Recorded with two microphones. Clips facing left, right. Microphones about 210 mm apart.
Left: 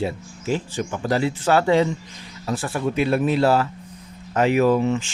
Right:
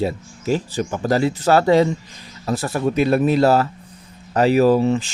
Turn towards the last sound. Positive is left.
turn(degrees=-35)  # may be behind; listen again after turning